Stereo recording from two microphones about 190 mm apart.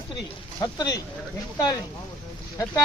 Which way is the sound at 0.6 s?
20° left (ahead or behind).